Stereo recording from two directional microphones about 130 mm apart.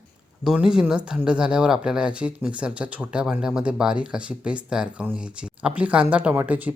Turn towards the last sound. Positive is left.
turn(degrees=-10)  # may be behind; listen again after turning